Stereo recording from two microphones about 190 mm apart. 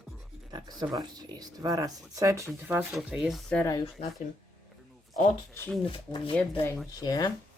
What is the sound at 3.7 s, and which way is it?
Speech, 30° left (ahead or behind).